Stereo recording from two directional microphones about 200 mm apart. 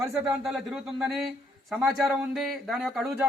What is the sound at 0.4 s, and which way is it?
A man's voice, centre (ahead or behind).